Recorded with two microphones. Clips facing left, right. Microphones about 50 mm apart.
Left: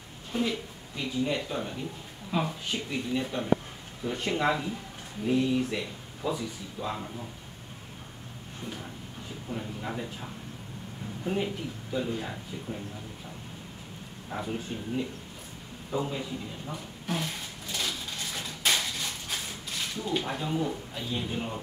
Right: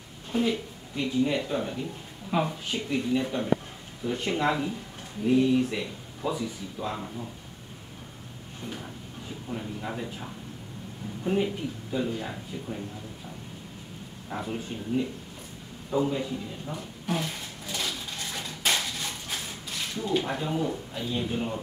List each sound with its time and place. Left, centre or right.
0.3 s speech: centre
2.3 s speech: centre
2.7 s speech: centre
9.5 s speech: centre
14.3 s speech: centre
16.6 s a sound: centre
20.0 s speech: centre